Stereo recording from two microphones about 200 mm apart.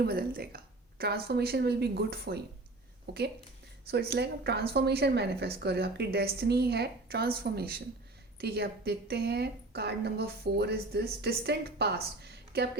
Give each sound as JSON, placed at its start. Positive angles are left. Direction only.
{"t": 0.0, "sound": "a woman's voice", "side_deg": -50}